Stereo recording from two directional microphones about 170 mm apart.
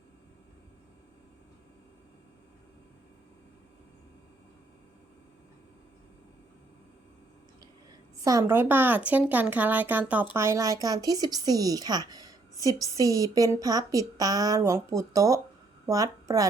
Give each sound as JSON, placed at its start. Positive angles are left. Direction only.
{"t": 8.2, "sound": "a woman's voice", "side_deg": -20}